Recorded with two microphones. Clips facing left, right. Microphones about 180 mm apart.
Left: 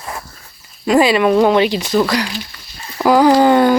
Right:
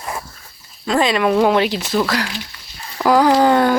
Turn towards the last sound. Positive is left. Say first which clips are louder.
# left 3 dB
turn(degrees=0)  # may be behind; listen again after turning